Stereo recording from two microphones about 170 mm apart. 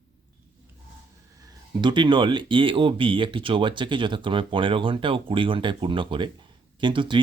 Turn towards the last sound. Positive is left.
turn(degrees=-30)  # may be behind; listen again after turning